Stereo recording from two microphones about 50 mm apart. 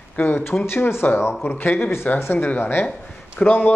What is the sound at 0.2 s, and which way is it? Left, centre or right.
Speech, left.